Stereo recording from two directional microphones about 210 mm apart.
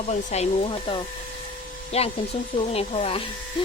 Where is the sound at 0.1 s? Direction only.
35° left (ahead or behind).